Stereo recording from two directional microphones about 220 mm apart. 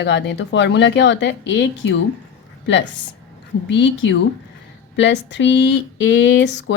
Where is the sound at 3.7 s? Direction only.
55° left (ahead or behind).